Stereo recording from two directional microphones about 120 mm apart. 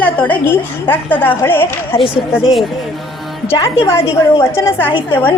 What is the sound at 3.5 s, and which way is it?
A woman's voice, 20° left (ahead or behind).